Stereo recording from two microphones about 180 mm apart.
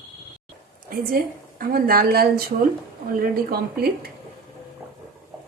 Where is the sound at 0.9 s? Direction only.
55° right (ahead or behind).